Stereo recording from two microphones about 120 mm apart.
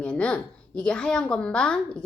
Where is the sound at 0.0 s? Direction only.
10° left (ahead or behind).